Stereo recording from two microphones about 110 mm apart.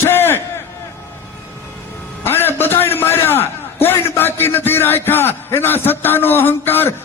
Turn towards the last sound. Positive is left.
turn(degrees=20)  # may be behind; listen again after turning